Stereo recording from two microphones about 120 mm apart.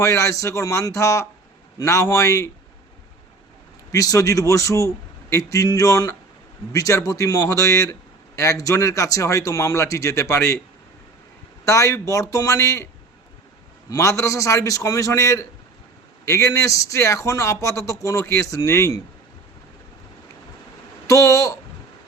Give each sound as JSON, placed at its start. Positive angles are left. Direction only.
{"t": 0.0, "sound": "a man's voice", "side_deg": 25}
{"t": 3.9, "sound": "a man's voice", "side_deg": 30}
{"t": 11.6, "sound": "a man's voice", "side_deg": 25}
{"t": 13.9, "sound": "a man's voice", "side_deg": 25}
{"t": 21.1, "sound": "a man's voice", "side_deg": 25}